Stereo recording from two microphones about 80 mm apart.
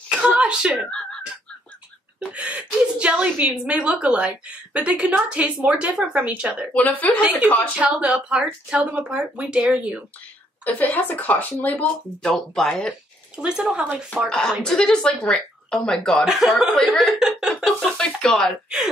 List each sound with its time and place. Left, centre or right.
0.2 s speech: centre
2.1 s a woman's voice: centre
6.7 s speech: left
7.2 s a woman's voice: centre
10.6 s speech: left
12.2 s speech: centre
13.4 s a woman's voice: centre
14.3 s speech: centre
16.3 s speech: centre